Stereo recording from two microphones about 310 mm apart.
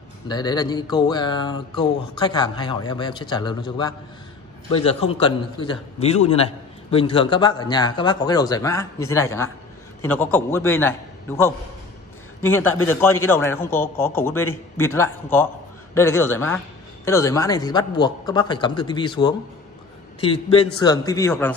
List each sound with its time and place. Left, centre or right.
0.3 s a man's voice: centre